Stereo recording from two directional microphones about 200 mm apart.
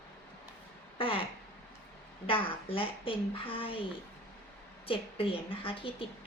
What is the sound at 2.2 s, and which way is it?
A woman's voice, 25° left (ahead or behind).